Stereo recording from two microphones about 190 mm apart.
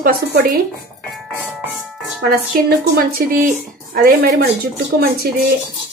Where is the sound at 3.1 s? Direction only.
50° right (ahead or behind).